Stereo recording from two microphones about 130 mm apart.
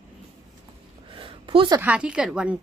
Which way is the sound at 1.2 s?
40° right (ahead or behind).